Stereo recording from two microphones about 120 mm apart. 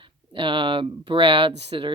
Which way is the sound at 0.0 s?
45° right (ahead or behind).